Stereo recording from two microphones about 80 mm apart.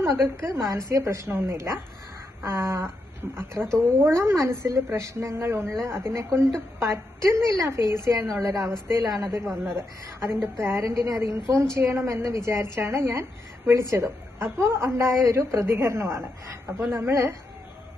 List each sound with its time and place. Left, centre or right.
0.0 s a woman's voice: right
9.3 s a woman's voice: right